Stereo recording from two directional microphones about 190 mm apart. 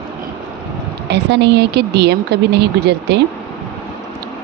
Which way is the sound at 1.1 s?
65° right (ahead or behind).